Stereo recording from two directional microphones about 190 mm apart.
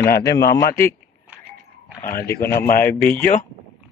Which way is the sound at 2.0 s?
45° left (ahead or behind).